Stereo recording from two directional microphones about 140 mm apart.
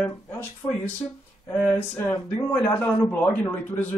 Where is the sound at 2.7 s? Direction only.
10° left (ahead or behind).